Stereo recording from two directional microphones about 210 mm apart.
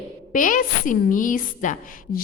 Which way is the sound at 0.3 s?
40° left (ahead or behind).